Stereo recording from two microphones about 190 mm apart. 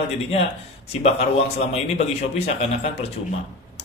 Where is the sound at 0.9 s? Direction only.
30° left (ahead or behind).